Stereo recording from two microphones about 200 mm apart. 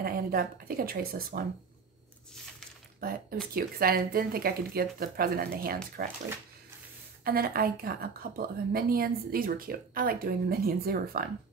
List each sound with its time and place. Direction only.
0.0 s a woman's voice: 45° right (ahead or behind)
3.0 s a woman's voice: 50° right (ahead or behind)
7.2 s a woman's voice: 50° right (ahead or behind)